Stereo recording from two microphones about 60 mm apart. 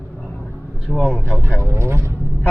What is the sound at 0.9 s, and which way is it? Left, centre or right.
Speech, centre.